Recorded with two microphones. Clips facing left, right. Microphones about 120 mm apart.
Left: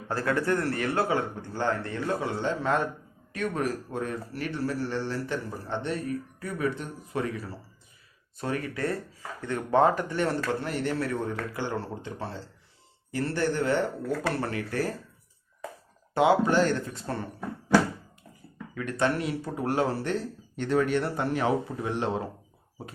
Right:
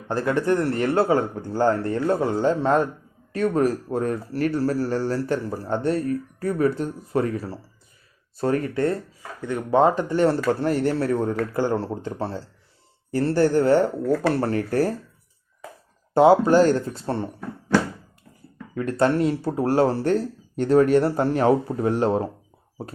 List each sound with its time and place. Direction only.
0.1 s a man's voice: 20° right (ahead or behind)
9.4 s speech: 10° right (ahead or behind)
9.8 s a man's voice: 25° right (ahead or behind)
14.0 s speech: 5° right (ahead or behind)
14.4 s a man's voice: 40° right (ahead or behind)
16.1 s a man's voice: 35° right (ahead or behind)
18.7 s a man's voice: 35° right (ahead or behind)